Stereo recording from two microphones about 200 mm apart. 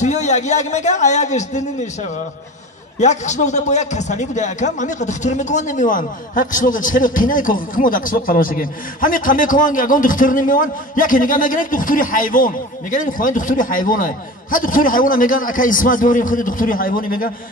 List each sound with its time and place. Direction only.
0.0 s a man's voice: 35° left (ahead or behind)
3.0 s a man's voice: 35° left (ahead or behind)